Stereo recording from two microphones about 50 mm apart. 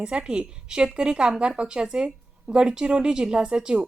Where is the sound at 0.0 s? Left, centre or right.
Right.